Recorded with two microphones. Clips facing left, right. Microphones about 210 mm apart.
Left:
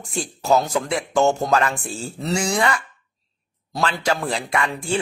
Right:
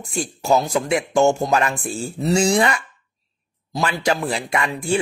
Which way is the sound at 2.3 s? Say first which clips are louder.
Right 4 dB; 25° right (ahead or behind).